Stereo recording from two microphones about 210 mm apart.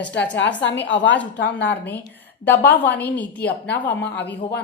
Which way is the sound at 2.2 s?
50° left (ahead or behind).